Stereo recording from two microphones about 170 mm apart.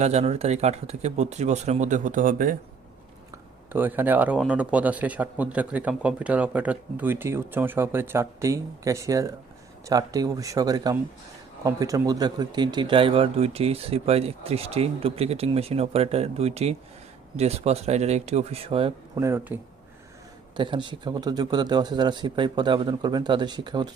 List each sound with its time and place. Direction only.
0.0 s speech: 40° right (ahead or behind)
3.7 s a man's voice: 10° right (ahead or behind); by 18.9 s 35° right (ahead or behind)
19.1 s speech: 15° right (ahead or behind)
20.6 s a man's voice: 25° right (ahead or behind)